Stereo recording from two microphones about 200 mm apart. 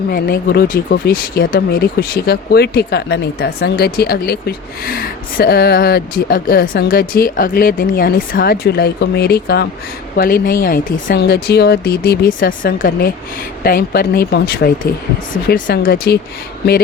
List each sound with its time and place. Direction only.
0.1 s speech: 50° left (ahead or behind)